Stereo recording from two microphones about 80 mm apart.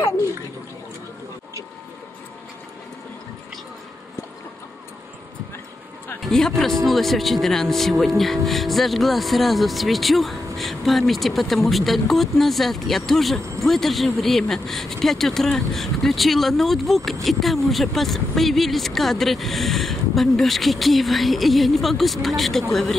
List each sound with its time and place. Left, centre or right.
6.2 s speech: centre